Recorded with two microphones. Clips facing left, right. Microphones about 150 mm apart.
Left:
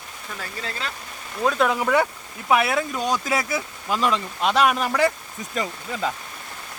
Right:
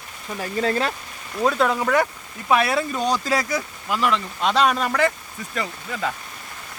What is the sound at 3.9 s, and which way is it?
Speech, 15° left (ahead or behind).